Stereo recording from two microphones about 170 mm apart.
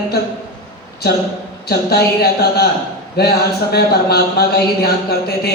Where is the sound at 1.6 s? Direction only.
70° left (ahead or behind).